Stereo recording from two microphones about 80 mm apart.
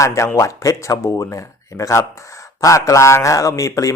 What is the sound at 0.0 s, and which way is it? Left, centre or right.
Speech, left.